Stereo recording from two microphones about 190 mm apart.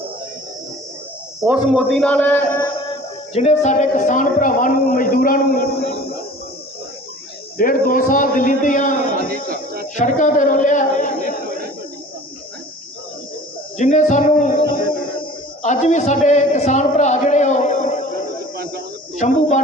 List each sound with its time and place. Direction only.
1.4 s a man's voice: 10° right (ahead or behind)
2.0 s a sound: 5° left (ahead or behind)
3.3 s a woman's voice: 35° left (ahead or behind); by 6.1 s 55° left (ahead or behind)
7.6 s a woman's voice: 45° left (ahead or behind)
9.3 s a sound: 50° right (ahead or behind)
9.9 s speech: 40° left (ahead or behind)
13.7 s music: 40° left (ahead or behind)
15.6 s a man's voice: 40° left (ahead or behind)
18.5 s a sound: 55° right (ahead or behind)
19.2 s music: 40° left (ahead or behind)